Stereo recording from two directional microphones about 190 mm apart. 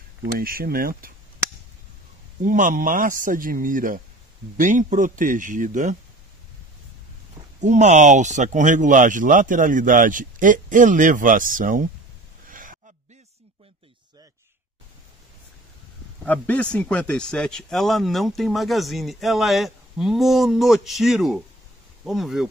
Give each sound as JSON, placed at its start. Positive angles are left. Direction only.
{"t": 0.2, "sound": "speech", "side_deg": -50}
{"t": 2.4, "sound": "speech", "side_deg": -45}
{"t": 7.6, "sound": "speech", "side_deg": -40}
{"t": 12.4, "sound": "gasp", "side_deg": -45}
{"t": 16.3, "sound": "speech", "side_deg": 10}